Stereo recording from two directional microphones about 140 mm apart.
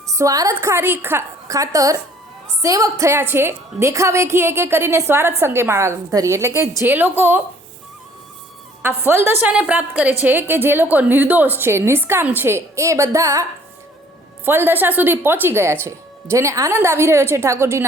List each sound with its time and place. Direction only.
0.1 s a woman's voice: 25° right (ahead or behind)
9.0 s a woman's voice: 15° right (ahead or behind)
14.4 s a woman's voice: 15° right (ahead or behind)